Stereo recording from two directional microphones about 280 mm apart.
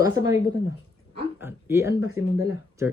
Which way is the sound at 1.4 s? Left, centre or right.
Centre.